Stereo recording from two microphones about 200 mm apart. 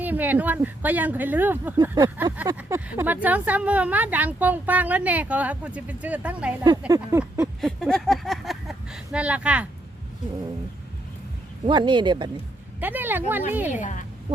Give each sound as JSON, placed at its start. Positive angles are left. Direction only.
{"t": 0.0, "sound": "speech", "side_deg": -10}
{"t": 6.7, "sound": "a sound", "side_deg": -20}
{"t": 9.1, "sound": "speech", "side_deg": -5}
{"t": 11.6, "sound": "speech", "side_deg": -25}
{"t": 12.8, "sound": "speech", "side_deg": -10}
{"t": 13.7, "sound": "a woman's voice", "side_deg": 40}